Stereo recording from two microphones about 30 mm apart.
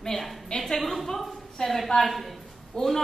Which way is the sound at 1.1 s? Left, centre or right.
Centre.